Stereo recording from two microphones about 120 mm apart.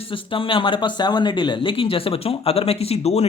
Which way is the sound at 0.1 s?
45° left (ahead or behind).